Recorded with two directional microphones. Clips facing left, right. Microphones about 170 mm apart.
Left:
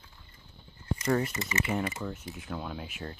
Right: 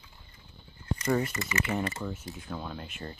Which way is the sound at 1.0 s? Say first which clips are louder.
Even; centre (ahead or behind).